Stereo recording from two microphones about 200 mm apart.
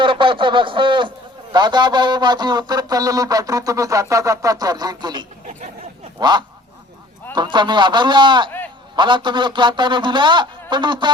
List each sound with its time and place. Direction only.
0.0 s speech: 25° right (ahead or behind)